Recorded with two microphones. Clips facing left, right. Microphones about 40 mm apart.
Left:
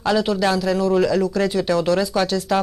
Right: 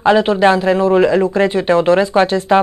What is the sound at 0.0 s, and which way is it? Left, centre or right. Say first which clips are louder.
Speech: right 8 dB; right.